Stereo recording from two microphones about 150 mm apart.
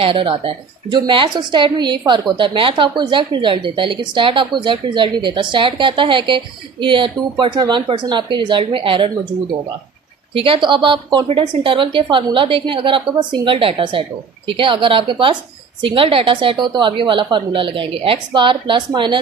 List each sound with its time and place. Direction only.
0.0 s speech: 35° right (ahead or behind)
10.3 s speech: 35° right (ahead or behind)